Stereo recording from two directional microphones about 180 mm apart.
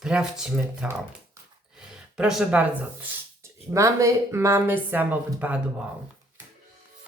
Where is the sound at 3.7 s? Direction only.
15° right (ahead or behind).